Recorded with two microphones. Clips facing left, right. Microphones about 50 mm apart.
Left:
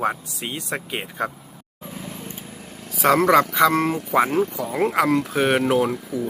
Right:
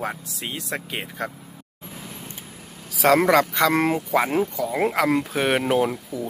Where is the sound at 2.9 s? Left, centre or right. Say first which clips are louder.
Even; centre.